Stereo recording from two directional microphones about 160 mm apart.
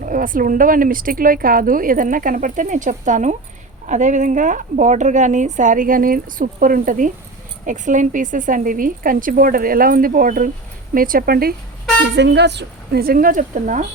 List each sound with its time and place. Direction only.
0.0 s speech: 60° right (ahead or behind)
12.1 s speech: 90° right; by 13.8 s 55° right (ahead or behind)